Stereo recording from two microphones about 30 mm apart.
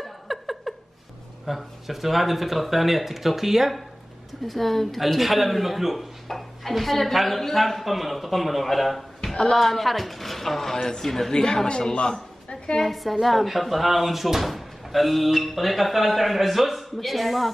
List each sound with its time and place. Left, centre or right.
0.3 s a sound: centre
1.4 s speech: centre
4.3 s speech: centre
6.2 s dishes: centre
6.7 s speech: centre
9.2 s a sound: centre
9.6 s speech: centre
11.3 s speech: left
11.9 s a sound: left
12.8 s speech: centre